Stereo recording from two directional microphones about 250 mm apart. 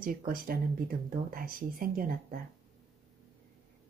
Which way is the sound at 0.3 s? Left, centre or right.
Right.